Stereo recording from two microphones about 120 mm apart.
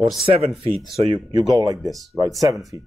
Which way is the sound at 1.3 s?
30° right (ahead or behind).